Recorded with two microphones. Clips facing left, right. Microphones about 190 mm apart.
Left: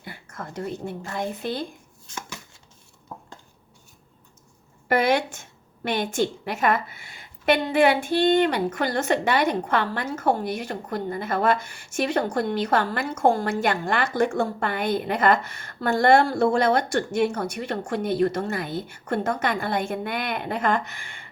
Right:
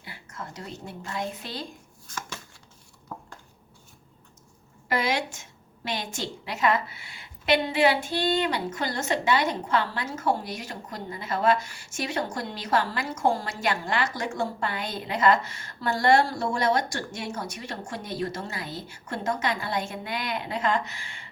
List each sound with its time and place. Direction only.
0.0 s a sound: 55° left (ahead or behind)
1.1 s a woman's voice: 55° left (ahead or behind)
4.9 s a woman's voice: 55° left (ahead or behind)